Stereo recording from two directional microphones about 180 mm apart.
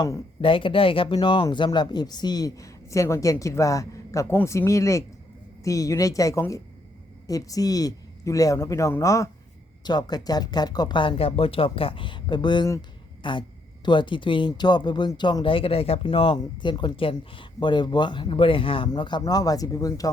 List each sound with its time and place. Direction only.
0.0 s speech: 25° left (ahead or behind)